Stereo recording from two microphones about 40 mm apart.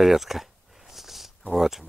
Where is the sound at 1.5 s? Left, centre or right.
Centre.